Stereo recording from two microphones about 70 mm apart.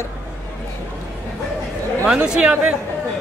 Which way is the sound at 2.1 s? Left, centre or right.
Centre.